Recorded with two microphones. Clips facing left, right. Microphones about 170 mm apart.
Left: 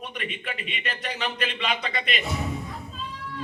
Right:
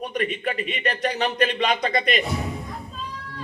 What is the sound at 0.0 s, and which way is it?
Speech, 40° right (ahead or behind).